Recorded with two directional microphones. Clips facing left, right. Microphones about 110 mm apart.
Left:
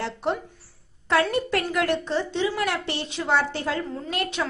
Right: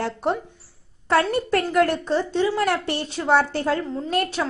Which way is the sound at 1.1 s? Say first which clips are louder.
Right 2 dB; 40° right (ahead or behind).